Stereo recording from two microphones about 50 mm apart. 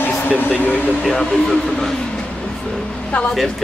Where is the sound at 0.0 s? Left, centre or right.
Left.